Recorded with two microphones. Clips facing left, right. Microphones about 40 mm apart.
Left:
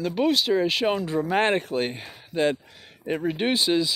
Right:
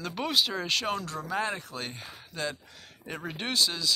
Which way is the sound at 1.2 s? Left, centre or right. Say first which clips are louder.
Left 9 dB; left.